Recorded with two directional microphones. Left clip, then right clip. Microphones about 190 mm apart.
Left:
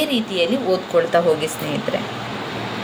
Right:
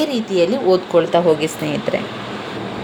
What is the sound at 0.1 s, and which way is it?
Speech, 25° right (ahead or behind).